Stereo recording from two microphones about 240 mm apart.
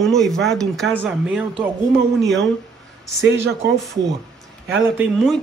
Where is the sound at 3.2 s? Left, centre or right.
Right.